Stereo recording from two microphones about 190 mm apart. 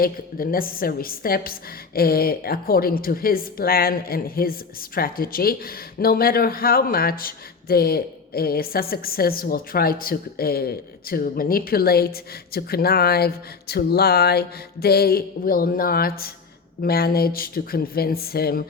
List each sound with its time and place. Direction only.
0.0 s speech: 50° left (ahead or behind)